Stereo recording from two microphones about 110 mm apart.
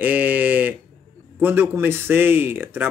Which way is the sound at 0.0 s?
15° right (ahead or behind).